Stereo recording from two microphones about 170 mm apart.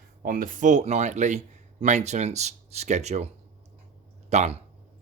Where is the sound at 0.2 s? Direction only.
55° right (ahead or behind).